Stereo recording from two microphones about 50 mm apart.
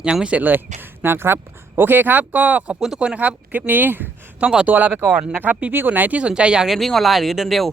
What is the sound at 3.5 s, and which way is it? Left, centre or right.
Speech, right.